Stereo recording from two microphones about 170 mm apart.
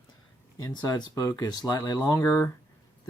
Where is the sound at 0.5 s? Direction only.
25° left (ahead or behind).